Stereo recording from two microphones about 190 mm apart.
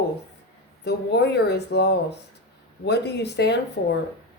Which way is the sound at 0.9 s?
60° left (ahead or behind).